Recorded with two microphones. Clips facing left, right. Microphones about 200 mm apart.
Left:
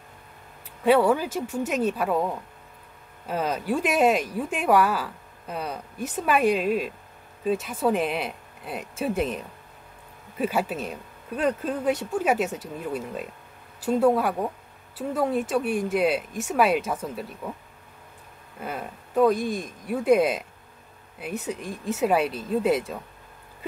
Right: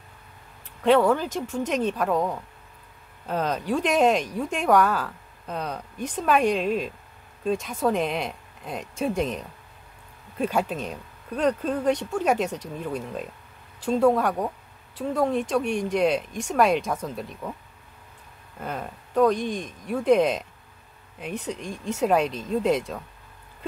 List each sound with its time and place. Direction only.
0.7 s speech: 10° left (ahead or behind)
18.6 s speech: 5° left (ahead or behind)